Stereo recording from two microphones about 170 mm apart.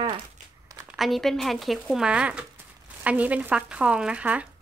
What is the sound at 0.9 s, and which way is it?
Speech, centre (ahead or behind).